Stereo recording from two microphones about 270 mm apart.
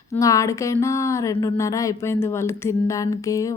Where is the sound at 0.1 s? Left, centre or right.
Centre.